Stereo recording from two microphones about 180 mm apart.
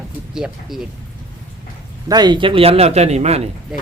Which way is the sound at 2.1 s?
25° right (ahead or behind).